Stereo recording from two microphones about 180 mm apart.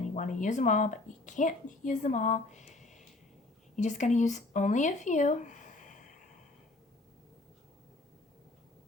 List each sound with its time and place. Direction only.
0.2 s a woman's voice: 45° left (ahead or behind)